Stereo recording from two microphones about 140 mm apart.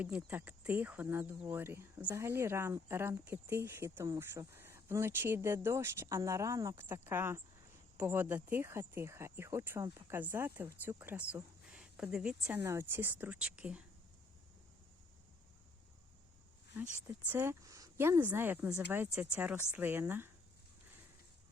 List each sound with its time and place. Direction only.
0.0 s speech: 10° right (ahead or behind)
12.5 s speech: 20° right (ahead or behind)
16.7 s speech: 15° right (ahead or behind)